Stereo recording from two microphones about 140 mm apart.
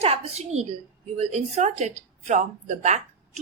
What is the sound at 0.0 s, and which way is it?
A woman's voice, 50° right (ahead or behind).